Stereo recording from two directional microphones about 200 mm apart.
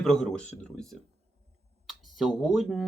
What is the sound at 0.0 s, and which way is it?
Speech, centre (ahead or behind).